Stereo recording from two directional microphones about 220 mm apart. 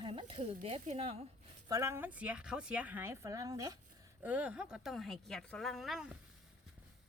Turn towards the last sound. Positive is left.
turn(degrees=0)  # may be behind; listen again after turning